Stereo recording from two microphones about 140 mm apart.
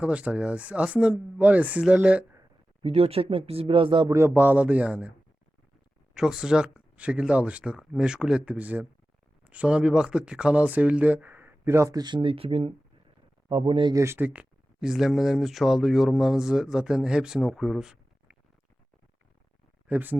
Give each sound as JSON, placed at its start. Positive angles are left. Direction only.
{"t": 0.0, "sound": "speech", "side_deg": -10}
{"t": 2.8, "sound": "speech", "side_deg": -45}
{"t": 4.1, "sound": "speech", "side_deg": -15}
{"t": 6.1, "sound": "speech", "side_deg": -5}
{"t": 13.9, "sound": "speech", "side_deg": -20}
{"t": 19.9, "sound": "speech", "side_deg": -15}